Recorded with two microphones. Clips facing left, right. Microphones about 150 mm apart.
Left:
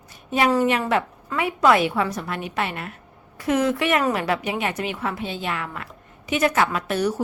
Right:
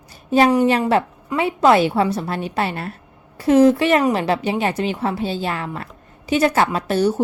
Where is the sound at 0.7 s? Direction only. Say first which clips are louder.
Right 4 dB; 30° right (ahead or behind).